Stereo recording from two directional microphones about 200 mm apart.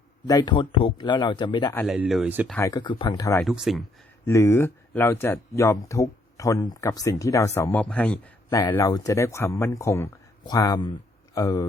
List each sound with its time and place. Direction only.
0.3 s a man's voice: 20° left (ahead or behind)
1.7 s speech: 5° left (ahead or behind)
2.6 s speech: 15° left (ahead or behind)
3.4 s speech: centre (ahead or behind)
4.3 s speech: 15° left (ahead or behind)